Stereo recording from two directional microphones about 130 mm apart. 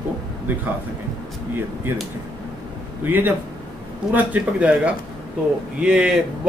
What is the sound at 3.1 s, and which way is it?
Speech, 15° right (ahead or behind).